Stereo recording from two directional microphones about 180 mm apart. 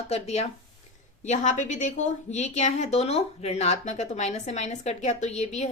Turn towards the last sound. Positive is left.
turn(degrees=40)  # may be behind; listen again after turning